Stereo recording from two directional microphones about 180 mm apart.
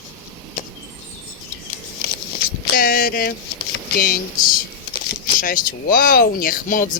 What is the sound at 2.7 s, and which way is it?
Speech, 50° left (ahead or behind).